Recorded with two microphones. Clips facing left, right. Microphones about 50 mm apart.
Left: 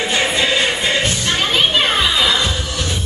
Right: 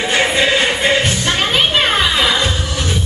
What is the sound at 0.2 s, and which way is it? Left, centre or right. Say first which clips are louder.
Music: right 3 dB; centre.